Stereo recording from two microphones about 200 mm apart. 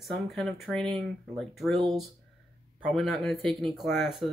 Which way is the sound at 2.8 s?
Centre (ahead or behind).